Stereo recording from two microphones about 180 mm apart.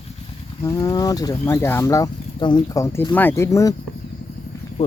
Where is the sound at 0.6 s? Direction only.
20° left (ahead or behind).